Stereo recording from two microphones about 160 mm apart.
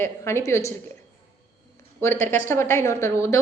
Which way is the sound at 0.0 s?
15° left (ahead or behind).